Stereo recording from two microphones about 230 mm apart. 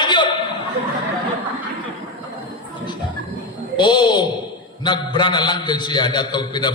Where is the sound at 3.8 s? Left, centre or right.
Centre.